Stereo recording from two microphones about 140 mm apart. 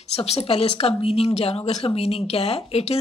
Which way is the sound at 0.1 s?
45° left (ahead or behind).